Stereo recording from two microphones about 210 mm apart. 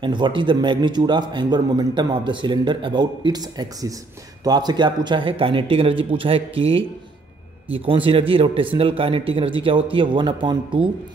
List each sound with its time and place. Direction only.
0.0 s a man's voice: 20° right (ahead or behind)